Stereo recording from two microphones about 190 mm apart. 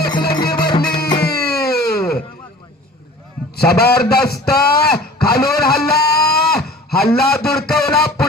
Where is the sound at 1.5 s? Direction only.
55° left (ahead or behind).